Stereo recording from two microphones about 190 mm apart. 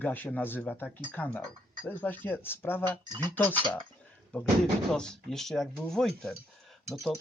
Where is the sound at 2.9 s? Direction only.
20° right (ahead or behind).